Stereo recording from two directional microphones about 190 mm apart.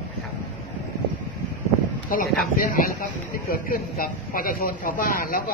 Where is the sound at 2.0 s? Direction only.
45° left (ahead or behind).